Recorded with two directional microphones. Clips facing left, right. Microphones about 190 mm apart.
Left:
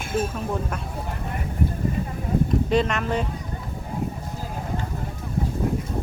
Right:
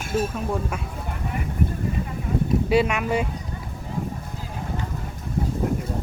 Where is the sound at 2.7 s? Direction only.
10° right (ahead or behind).